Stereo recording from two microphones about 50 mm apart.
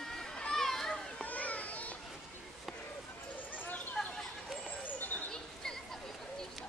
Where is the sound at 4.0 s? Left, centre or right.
Centre.